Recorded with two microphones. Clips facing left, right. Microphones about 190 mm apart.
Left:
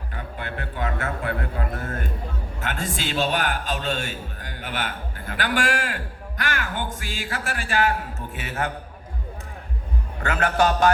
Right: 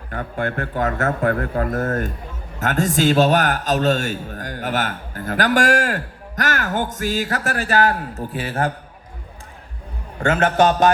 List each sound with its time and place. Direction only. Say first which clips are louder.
0.1 s a man's voice: right 9 dB; 50° right (ahead or behind); by 8.7 s 35° right (ahead or behind)
10.2 s a man's voice: right 5 dB; 25° right (ahead or behind)